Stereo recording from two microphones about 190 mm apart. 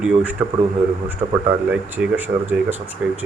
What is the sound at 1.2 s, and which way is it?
Speech, 20° right (ahead or behind).